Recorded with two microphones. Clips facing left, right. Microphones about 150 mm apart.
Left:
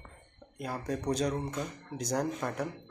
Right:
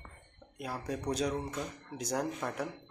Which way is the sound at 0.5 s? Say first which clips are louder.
Left 3 dB; 5° right (ahead or behind).